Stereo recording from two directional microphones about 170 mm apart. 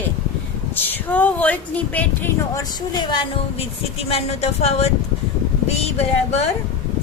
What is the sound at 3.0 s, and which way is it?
Speech, 25° left (ahead or behind).